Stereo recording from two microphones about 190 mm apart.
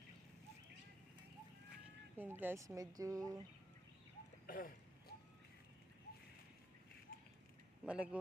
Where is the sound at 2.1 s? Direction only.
10° right (ahead or behind).